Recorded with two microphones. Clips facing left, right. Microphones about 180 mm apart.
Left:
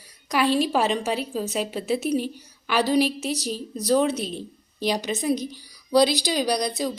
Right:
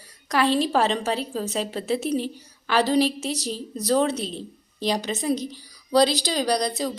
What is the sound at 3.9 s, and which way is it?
A woman's voice, 15° left (ahead or behind).